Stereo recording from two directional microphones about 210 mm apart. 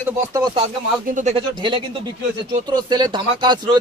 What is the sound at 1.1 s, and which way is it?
Speech, 30° right (ahead or behind).